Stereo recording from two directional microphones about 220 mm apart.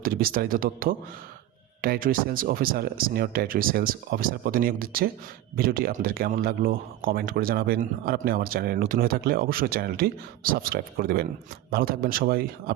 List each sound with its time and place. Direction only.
0.0 s speech: 40° right (ahead or behind)